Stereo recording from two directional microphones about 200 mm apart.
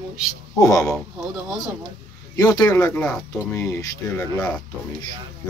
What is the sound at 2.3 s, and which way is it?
Speech, 20° left (ahead or behind).